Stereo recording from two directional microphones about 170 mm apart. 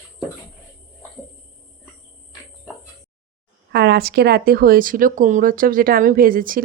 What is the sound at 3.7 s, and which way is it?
Speech, 75° right (ahead or behind).